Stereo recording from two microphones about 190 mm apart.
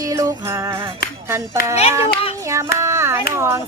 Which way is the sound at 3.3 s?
15° right (ahead or behind).